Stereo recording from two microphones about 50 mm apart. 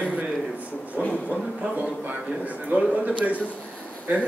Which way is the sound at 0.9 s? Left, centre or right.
Left.